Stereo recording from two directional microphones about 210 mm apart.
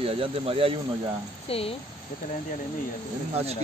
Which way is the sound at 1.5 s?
25° left (ahead or behind).